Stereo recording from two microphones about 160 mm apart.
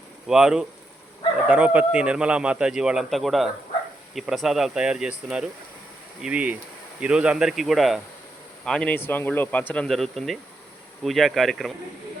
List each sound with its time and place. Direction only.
0.3 s speech: 5° right (ahead or behind)